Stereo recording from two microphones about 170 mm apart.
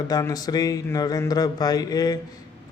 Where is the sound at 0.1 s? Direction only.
20° left (ahead or behind).